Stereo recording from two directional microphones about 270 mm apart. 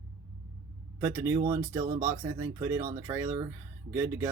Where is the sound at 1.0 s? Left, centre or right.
Centre.